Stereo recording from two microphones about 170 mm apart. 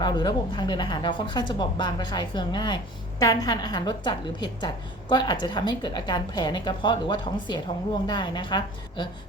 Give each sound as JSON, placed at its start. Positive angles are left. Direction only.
{"t": 0.0, "sound": "a woman's voice", "side_deg": 25}